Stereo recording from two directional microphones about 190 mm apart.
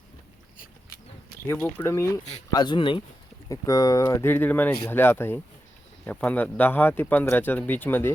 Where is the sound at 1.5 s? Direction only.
10° left (ahead or behind).